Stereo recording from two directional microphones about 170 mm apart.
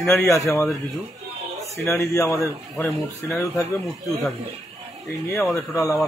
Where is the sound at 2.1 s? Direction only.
20° left (ahead or behind).